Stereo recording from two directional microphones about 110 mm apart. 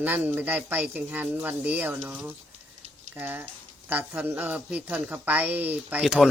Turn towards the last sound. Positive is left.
turn(degrees=-5)  # may be behind; listen again after turning